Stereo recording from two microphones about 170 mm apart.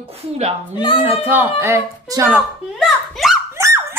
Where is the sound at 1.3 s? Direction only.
10° right (ahead or behind).